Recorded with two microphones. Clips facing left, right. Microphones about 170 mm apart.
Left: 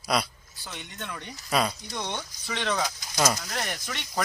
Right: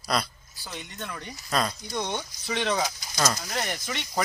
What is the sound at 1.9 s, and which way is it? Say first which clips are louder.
Speech: right 3 dB; 10° right (ahead or behind).